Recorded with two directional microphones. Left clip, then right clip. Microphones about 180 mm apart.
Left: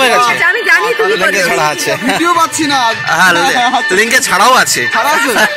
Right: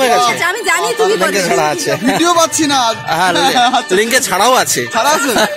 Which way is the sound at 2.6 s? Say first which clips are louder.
Left 2 dB; 20° right (ahead or behind).